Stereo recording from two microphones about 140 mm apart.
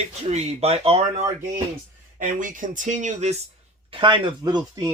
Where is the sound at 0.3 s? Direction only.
50° right (ahead or behind).